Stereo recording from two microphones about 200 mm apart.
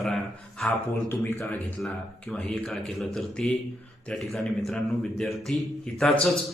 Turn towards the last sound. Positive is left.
turn(degrees=5)  # may be behind; listen again after turning